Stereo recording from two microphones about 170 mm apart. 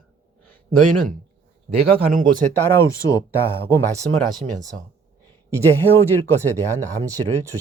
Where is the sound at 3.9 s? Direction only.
20° right (ahead or behind).